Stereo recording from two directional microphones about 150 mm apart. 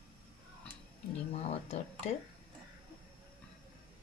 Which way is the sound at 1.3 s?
45° left (ahead or behind).